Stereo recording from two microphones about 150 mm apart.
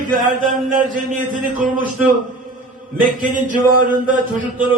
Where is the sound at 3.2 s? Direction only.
60° right (ahead or behind).